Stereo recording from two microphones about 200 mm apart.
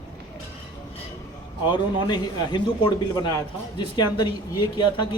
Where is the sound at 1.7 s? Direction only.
20° left (ahead or behind).